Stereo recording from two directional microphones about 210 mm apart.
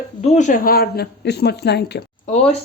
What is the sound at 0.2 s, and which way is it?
Speech, 35° left (ahead or behind).